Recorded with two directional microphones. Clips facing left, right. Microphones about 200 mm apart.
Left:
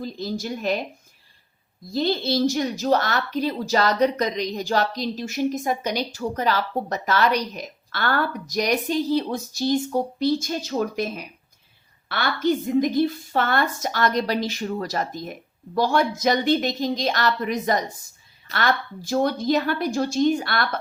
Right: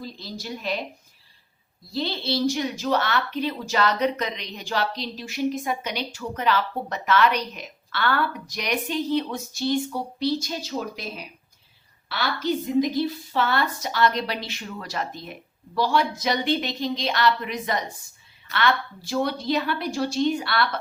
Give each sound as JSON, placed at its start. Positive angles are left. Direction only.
{"t": 0.0, "sound": "a woman's voice", "side_deg": 45}
{"t": 1.9, "sound": "a woman's voice", "side_deg": 45}